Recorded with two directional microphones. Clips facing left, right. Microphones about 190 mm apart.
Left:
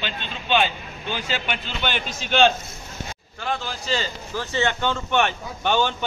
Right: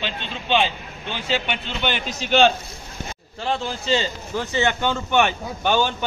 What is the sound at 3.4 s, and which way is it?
A man's voice, 25° right (ahead or behind).